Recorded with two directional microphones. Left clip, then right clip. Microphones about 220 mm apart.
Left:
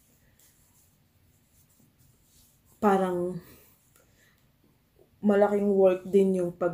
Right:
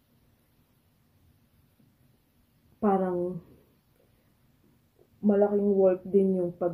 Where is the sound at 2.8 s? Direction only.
5° left (ahead or behind).